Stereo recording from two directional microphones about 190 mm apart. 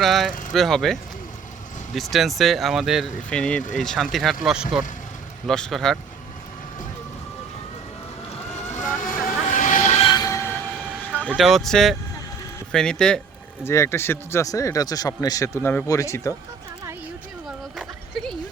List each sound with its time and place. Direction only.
0.0 s speech: centre (ahead or behind)
2.0 s speech: centre (ahead or behind)
8.5 s vehicle: 40° left (ahead or behind)
10.1 s train: 20° left (ahead or behind)
11.3 s speech: centre (ahead or behind); by 16.3 s 15° left (ahead or behind)
17.7 s a sound: 5° left (ahead or behind)